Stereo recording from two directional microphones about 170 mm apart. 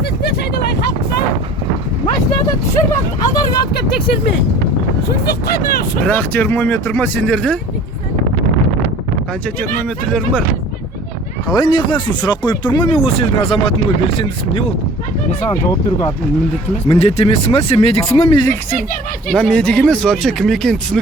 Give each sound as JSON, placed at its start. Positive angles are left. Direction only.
{"t": 2.9, "sound": "speech", "side_deg": 20}
{"t": 6.1, "sound": "speech", "side_deg": 10}
{"t": 10.1, "sound": "speech", "side_deg": 5}
{"t": 11.4, "sound": "speech", "side_deg": 25}
{"t": 17.0, "sound": "speech", "side_deg": 35}
{"t": 19.3, "sound": "speech", "side_deg": 5}